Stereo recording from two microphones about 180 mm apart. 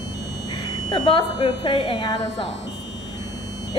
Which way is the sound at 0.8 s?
25° left (ahead or behind).